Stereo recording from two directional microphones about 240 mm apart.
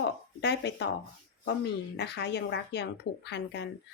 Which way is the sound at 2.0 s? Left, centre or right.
Left.